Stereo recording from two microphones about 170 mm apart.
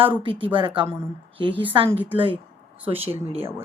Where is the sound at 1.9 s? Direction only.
10° right (ahead or behind).